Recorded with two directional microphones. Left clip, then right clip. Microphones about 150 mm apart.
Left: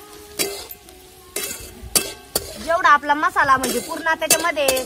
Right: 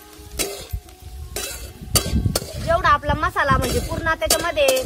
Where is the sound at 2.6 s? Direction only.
40° right (ahead or behind).